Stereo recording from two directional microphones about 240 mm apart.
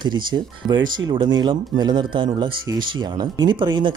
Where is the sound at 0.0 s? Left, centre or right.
Centre.